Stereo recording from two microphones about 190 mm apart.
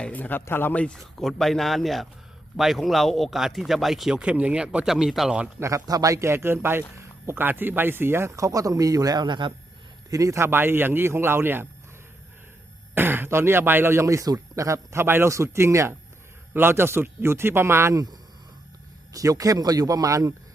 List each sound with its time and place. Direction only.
0.0 s speech: 10° left (ahead or behind); by 11.7 s 10° right (ahead or behind)
12.9 s speech: 10° right (ahead or behind)